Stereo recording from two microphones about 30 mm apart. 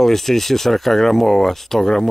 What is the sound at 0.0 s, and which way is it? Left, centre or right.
Speech, centre.